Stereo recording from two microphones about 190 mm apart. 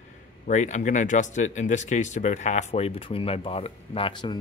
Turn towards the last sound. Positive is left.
turn(degrees=25)  # may be behind; listen again after turning